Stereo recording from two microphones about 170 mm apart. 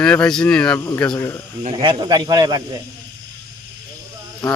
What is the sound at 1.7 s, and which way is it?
Speech, 25° right (ahead or behind).